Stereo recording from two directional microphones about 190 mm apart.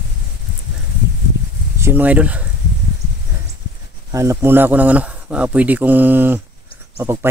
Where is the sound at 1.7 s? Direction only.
10° right (ahead or behind).